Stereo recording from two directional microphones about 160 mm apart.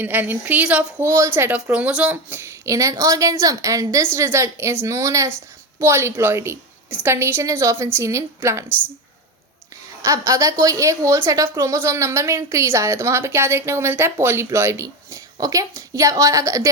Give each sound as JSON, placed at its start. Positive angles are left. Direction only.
{"t": 0.0, "sound": "speech", "side_deg": -10}
{"t": 10.0, "sound": "a woman's voice", "side_deg": -20}